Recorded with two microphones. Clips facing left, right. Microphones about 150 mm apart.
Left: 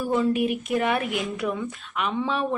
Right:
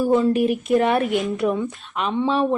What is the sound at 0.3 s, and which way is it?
Speech, 40° right (ahead or behind).